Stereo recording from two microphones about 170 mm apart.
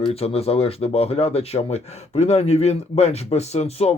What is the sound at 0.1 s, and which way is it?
Speech, 35° left (ahead or behind).